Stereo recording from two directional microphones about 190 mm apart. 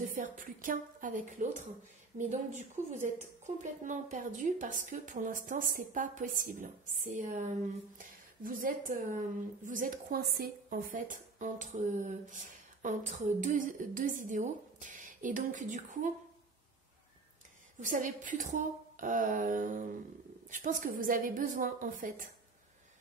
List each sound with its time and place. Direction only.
0.1 s a woman's voice: 45° right (ahead or behind)
17.7 s speech: 40° right (ahead or behind)